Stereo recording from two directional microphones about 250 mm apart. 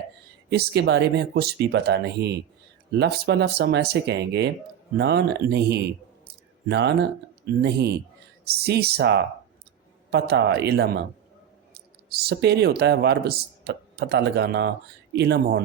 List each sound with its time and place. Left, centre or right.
0.5 s speech: right
6.2 s a sound: right
7.6 s speech: right